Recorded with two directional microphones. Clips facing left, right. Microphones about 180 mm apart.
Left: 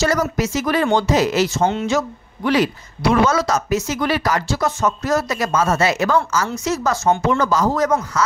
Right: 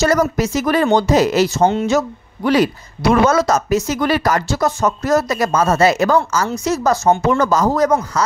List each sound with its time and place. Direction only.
0.0 s speech: 40° right (ahead or behind)